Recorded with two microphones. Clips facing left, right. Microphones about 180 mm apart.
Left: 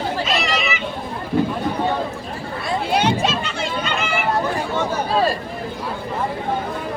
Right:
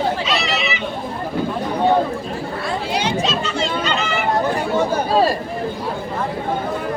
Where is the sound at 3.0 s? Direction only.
55° left (ahead or behind).